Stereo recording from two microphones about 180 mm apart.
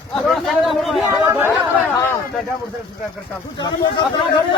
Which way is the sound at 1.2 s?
10° right (ahead or behind).